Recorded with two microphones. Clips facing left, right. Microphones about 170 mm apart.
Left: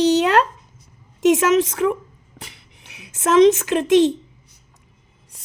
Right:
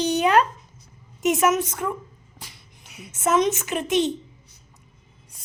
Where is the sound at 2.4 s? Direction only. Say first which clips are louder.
Left 5 dB; 70° left (ahead or behind); by 4.1 s 90° left.